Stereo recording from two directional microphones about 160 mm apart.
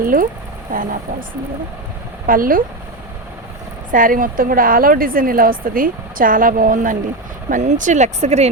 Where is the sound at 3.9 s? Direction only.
60° right (ahead or behind).